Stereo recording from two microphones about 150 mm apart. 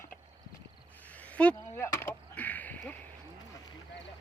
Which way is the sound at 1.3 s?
10° left (ahead or behind).